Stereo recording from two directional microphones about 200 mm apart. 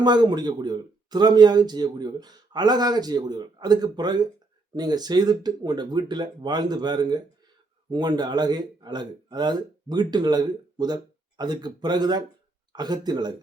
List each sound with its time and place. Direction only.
0.0 s speech: 20° right (ahead or behind)